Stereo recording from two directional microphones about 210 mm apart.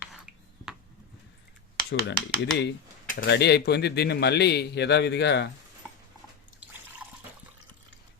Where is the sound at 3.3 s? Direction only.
55° left (ahead or behind).